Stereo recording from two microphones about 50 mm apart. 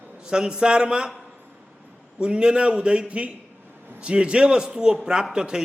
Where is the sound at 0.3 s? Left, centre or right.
Centre.